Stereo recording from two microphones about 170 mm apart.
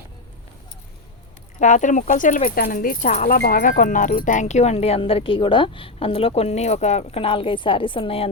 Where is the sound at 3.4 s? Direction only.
55° left (ahead or behind).